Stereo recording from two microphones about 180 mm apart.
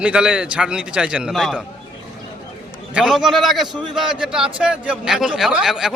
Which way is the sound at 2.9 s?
5° right (ahead or behind).